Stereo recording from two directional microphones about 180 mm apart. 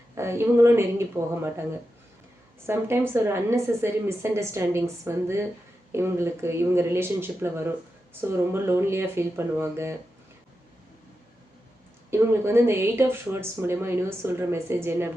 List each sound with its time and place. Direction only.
0.2 s speech: 15° right (ahead or behind)
2.6 s speech: 15° right (ahead or behind)
12.1 s speech: 15° right (ahead or behind)